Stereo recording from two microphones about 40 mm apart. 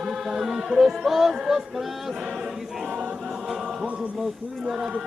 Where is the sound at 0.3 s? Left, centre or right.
Centre.